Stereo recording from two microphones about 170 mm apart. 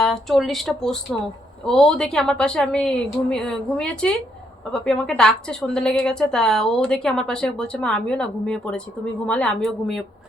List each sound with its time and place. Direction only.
0.0 s a woman's voice: centre (ahead or behind)